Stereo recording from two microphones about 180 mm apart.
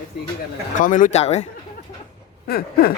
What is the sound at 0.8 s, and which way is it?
Speech, 45° left (ahead or behind).